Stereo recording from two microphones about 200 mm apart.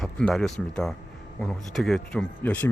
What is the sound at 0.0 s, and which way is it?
Speech, 5° left (ahead or behind).